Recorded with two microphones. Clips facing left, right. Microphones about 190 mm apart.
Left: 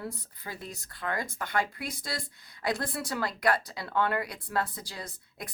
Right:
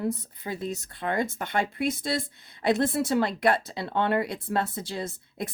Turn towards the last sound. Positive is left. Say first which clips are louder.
# right 8 dB
turn(degrees=-25)  # may be behind; listen again after turning